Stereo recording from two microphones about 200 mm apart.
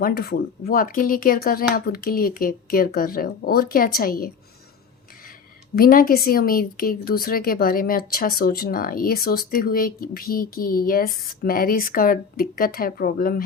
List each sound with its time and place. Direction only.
0.0 s speech: 50° left (ahead or behind)
5.7 s speech: 45° left (ahead or behind)